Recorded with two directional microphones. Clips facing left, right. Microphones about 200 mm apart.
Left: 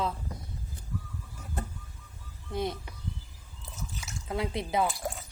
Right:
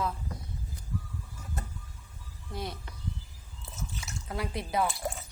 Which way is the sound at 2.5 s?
20° left (ahead or behind).